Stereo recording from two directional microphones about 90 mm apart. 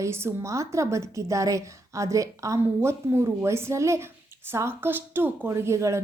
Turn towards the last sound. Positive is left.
turn(degrees=-30)  # may be behind; listen again after turning